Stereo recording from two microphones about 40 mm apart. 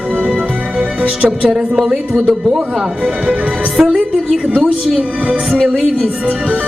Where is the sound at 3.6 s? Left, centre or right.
Right.